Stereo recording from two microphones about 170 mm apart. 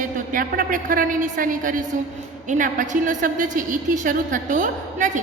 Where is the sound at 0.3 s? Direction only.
55° right (ahead or behind).